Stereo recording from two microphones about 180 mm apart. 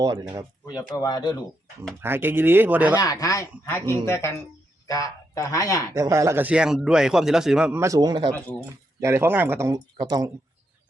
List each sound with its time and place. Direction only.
0.0 s speech: 20° right (ahead or behind)
0.9 s speech: 25° left (ahead or behind)
2.0 s speech: 10° right (ahead or behind)
2.9 s speech: 20° left (ahead or behind)
5.9 s speech: 15° right (ahead or behind)
8.3 s speech: 10° left (ahead or behind)
9.0 s speech: 15° right (ahead or behind)